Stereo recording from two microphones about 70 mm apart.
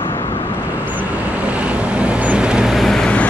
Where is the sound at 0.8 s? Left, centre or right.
Right.